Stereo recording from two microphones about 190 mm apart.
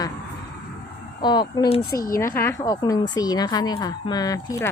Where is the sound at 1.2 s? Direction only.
20° left (ahead or behind).